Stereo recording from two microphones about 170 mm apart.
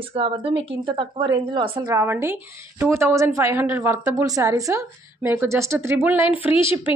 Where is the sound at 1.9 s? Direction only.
15° right (ahead or behind).